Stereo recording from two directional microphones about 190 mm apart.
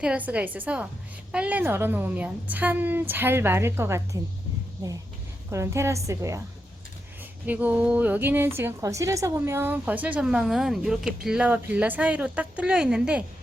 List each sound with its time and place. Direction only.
0.0 s a woman's voice: 5° right (ahead or behind)
5.5 s a woman's voice: 15° right (ahead or behind)
7.4 s a woman's voice: 10° right (ahead or behind)